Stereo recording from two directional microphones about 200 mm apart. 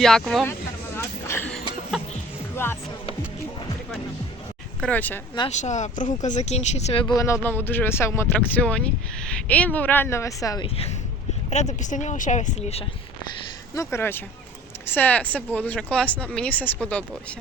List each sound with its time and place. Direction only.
0.0 s speech: centre (ahead or behind)
0.9 s a sound: 10° left (ahead or behind)
4.8 s speech: 10° left (ahead or behind)
5.5 s speech: 35° left (ahead or behind); by 10.7 s 15° left (ahead or behind)
11.5 s speech: 35° left (ahead or behind)
13.7 s speech: 10° left (ahead or behind)